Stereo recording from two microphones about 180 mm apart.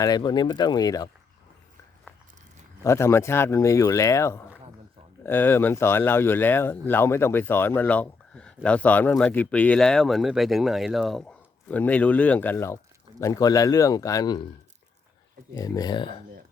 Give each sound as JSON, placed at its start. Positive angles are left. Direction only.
{"t": 0.0, "sound": "speech", "side_deg": 25}
{"t": 2.8, "sound": "speech", "side_deg": 15}
{"t": 15.5, "sound": "speech", "side_deg": 20}